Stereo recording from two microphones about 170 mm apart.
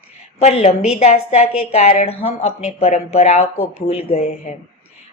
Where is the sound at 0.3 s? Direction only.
40° left (ahead or behind).